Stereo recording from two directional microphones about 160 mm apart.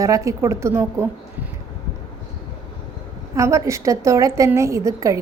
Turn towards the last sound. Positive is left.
turn(degrees=-20)  # may be behind; listen again after turning